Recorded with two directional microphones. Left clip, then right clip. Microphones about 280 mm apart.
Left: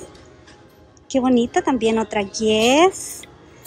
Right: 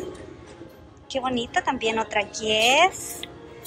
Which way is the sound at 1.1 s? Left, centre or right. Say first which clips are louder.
Left 7 dB; centre.